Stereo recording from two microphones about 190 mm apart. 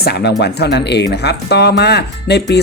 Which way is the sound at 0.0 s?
60° left (ahead or behind).